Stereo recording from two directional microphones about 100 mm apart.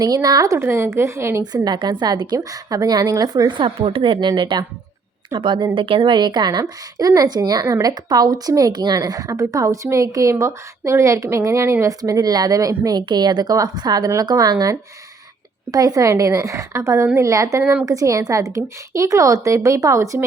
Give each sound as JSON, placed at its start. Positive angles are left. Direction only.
{"t": 0.0, "sound": "a woman's voice", "side_deg": -40}
{"t": 1.6, "sound": "a woman's voice", "side_deg": -45}